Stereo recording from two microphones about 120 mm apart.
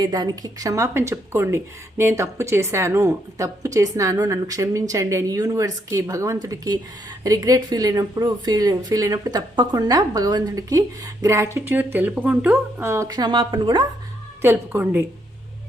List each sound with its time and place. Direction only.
0.0 s speech: 35° right (ahead or behind)
13.1 s speech: 35° right (ahead or behind)
14.4 s a woman's voice: 15° right (ahead or behind)